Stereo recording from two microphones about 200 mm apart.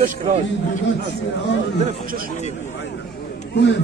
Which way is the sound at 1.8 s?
45° right (ahead or behind).